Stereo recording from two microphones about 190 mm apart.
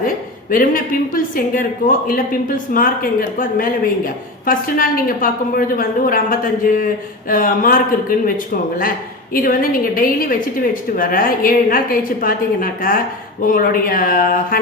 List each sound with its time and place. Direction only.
0.5 s speech: 45° left (ahead or behind)
9.3 s speech: 45° left (ahead or behind)